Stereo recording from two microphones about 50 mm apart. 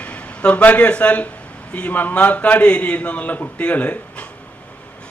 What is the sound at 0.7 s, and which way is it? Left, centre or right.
Speech, left.